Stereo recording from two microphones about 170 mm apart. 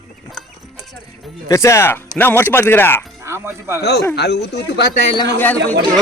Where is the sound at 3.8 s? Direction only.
75° left (ahead or behind).